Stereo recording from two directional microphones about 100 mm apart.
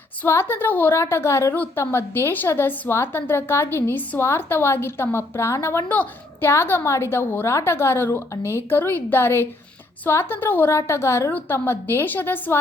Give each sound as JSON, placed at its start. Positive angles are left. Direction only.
{"t": 0.2, "sound": "a woman's voice", "side_deg": 20}